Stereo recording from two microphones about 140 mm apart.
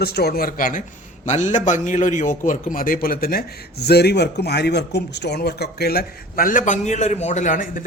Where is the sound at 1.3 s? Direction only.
60° left (ahead or behind); by 3.4 s 90° left.